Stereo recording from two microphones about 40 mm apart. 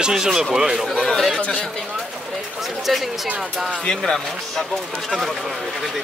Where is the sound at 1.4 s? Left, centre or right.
Left.